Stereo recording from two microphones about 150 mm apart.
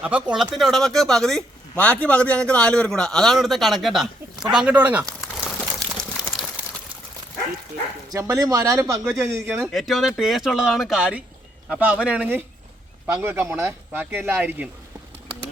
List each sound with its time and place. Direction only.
0.0 s speech: 10° right (ahead or behind)
6.0 s a sound: centre (ahead or behind)
8.1 s a man's voice: 25° right (ahead or behind)
9.6 s speech: centre (ahead or behind)